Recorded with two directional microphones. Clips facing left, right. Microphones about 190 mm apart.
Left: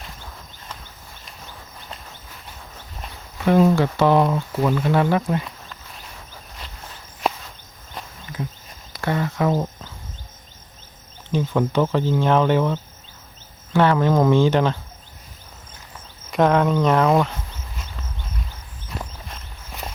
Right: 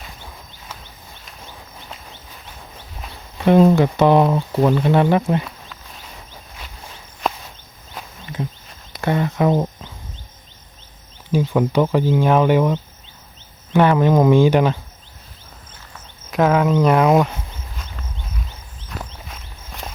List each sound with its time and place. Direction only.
3.3 s speech: 20° right (ahead or behind)
4.4 s speech: 35° right (ahead or behind)
4.8 s speech: 20° right (ahead or behind)
8.4 s a sound: 20° right (ahead or behind)
8.9 s speech: 20° right (ahead or behind)
11.3 s speech: 10° right (ahead or behind)
16.3 s speech: 5° right (ahead or behind)
18.9 s walk: 5° left (ahead or behind)